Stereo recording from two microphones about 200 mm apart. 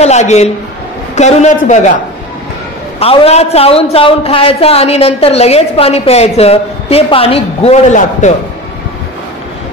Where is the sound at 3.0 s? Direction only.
30° left (ahead or behind).